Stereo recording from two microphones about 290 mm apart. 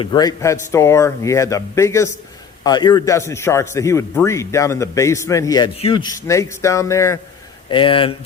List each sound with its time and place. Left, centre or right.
0.0 s a man's voice: centre